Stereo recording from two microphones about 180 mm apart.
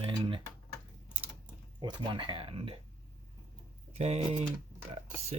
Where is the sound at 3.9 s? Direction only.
35° right (ahead or behind).